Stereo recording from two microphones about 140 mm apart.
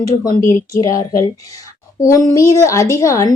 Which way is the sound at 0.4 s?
25° left (ahead or behind).